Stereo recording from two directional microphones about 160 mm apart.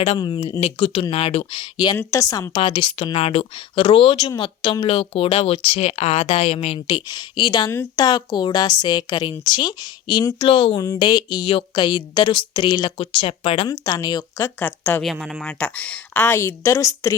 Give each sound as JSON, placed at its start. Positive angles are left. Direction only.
{"t": 0.2, "sound": "speech", "side_deg": 30}
{"t": 2.6, "sound": "speech", "side_deg": 30}
{"t": 7.7, "sound": "speech", "side_deg": 20}
{"t": 13.8, "sound": "speech", "side_deg": 25}
{"t": 15.0, "sound": "speech", "side_deg": 0}